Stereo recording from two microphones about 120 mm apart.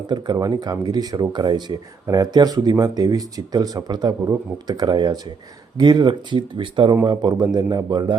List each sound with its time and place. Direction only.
0.1 s speech: 35° right (ahead or behind)